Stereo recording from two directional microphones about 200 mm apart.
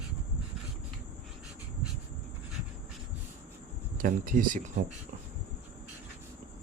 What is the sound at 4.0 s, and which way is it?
Speech, 45° right (ahead or behind).